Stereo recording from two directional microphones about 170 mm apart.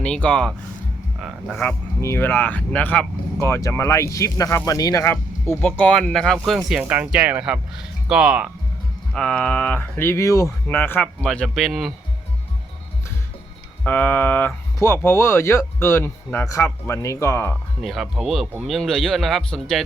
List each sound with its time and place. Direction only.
0.0 s speech: 5° left (ahead or behind)
1.6 s speech: 15° left (ahead or behind); by 8.4 s 5° right (ahead or behind)
9.1 s speech: 5° left (ahead or behind)
13.8 s speech: 10° left (ahead or behind)
17.8 s speech: centre (ahead or behind)